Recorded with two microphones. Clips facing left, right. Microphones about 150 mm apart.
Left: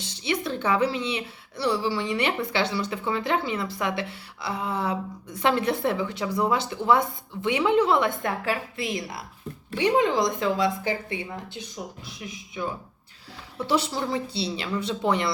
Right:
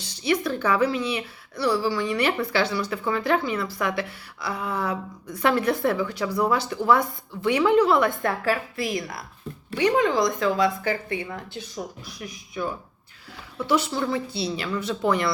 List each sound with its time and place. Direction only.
0.0 s speech: 25° left (ahead or behind)
13.7 s speech: 30° left (ahead or behind)